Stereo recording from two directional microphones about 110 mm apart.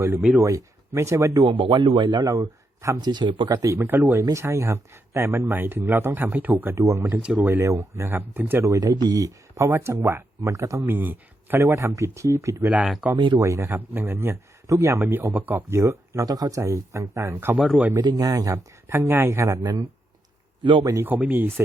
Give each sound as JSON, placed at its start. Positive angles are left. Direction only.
{"t": 0.2, "sound": "speech", "side_deg": -5}
{"t": 0.4, "sound": "speech", "side_deg": -25}
{"t": 1.5, "sound": "speech", "side_deg": -45}
{"t": 3.0, "sound": "speech", "side_deg": -40}
{"t": 3.6, "sound": "speech", "side_deg": -30}
{"t": 7.1, "sound": "speech", "side_deg": -10}
{"t": 7.4, "sound": "speech", "side_deg": -25}
{"t": 8.7, "sound": "speech", "side_deg": -35}
{"t": 12.7, "sound": "speech", "side_deg": -5}
{"t": 13.1, "sound": "speech", "side_deg": -45}
{"t": 13.4, "sound": "speech", "side_deg": -25}
{"t": 18.0, "sound": "speech", "side_deg": -35}
{"t": 20.8, "sound": "speech", "side_deg": -25}